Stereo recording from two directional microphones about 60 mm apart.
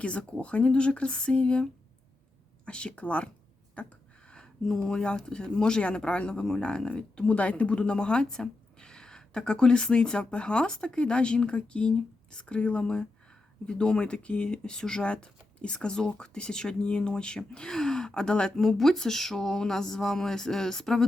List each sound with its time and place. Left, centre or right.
0.0 s speech: centre
2.6 s speech: centre